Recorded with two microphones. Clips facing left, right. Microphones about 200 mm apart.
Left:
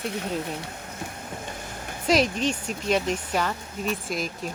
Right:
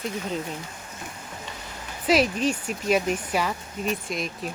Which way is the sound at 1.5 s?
50° left (ahead or behind).